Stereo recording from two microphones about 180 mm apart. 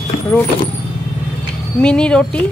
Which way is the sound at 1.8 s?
5° left (ahead or behind).